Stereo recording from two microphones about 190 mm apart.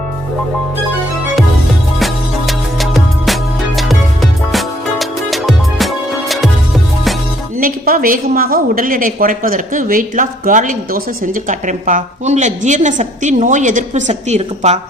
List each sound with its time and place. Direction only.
2.0 s music: centre (ahead or behind)
7.6 s a woman's voice: 45° right (ahead or behind)